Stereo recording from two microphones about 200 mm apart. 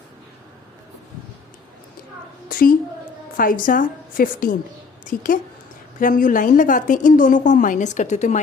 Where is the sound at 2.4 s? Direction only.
45° left (ahead or behind).